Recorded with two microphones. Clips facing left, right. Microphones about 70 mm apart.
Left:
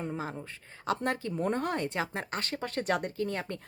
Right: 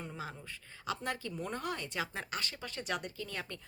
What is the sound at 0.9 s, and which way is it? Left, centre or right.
Speech, left.